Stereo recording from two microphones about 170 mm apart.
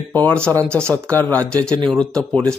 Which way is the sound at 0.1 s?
10° left (ahead or behind).